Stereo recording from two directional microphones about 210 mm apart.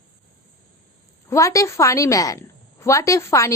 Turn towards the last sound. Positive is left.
turn(degrees=15)  # may be behind; listen again after turning